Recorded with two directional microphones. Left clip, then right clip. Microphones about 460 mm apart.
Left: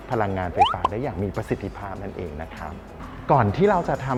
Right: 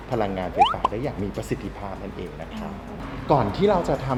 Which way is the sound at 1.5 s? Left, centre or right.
Left.